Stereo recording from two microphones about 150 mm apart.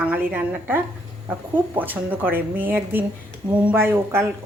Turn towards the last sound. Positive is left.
turn(degrees=-15)  # may be behind; listen again after turning